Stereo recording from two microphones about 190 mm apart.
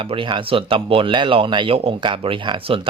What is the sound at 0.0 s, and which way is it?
Speech, 25° right (ahead or behind).